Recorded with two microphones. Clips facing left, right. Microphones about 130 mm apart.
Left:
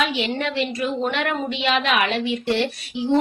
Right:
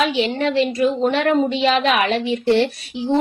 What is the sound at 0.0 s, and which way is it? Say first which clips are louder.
A woman's voice: right 4 dB; 35° right (ahead or behind).